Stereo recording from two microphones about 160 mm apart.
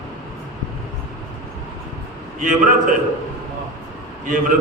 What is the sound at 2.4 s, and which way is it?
Speech, 55° right (ahead or behind).